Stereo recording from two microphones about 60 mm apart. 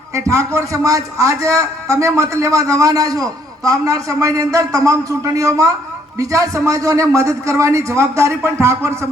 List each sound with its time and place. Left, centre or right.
0.1 s a man's voice: right